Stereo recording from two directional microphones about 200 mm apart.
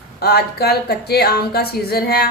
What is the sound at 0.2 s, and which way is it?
Speech, 50° left (ahead or behind).